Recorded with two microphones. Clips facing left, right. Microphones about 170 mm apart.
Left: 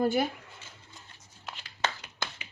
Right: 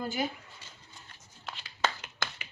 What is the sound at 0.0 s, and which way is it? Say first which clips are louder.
Speech: left 7 dB; 60° left (ahead or behind).